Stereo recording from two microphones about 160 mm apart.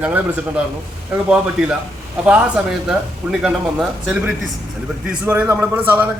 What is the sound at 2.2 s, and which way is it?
A man's voice, 5° right (ahead or behind).